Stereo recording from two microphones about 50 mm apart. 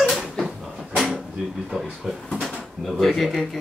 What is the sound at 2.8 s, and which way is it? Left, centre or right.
Speech, centre.